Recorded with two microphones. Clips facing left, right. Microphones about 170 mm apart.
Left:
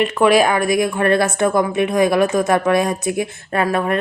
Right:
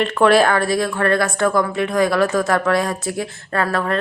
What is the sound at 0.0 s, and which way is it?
A woman's voice, 10° left (ahead or behind).